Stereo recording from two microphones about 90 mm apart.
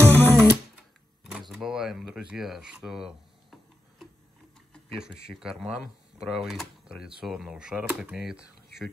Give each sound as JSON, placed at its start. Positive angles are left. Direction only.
{"t": 0.0, "sound": "music", "side_deg": 20}
{"t": 1.5, "sound": "speech", "side_deg": -5}
{"t": 4.9, "sound": "speech", "side_deg": -5}